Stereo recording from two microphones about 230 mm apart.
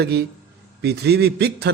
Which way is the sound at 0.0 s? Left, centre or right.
Right.